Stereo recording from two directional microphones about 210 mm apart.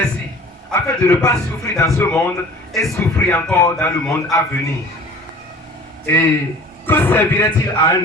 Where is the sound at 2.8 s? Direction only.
10° left (ahead or behind).